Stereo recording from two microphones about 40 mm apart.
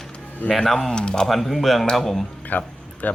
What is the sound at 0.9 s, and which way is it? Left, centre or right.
Speech, centre.